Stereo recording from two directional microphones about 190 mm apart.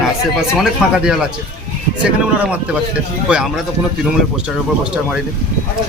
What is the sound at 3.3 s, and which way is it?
Speech, 5° right (ahead or behind).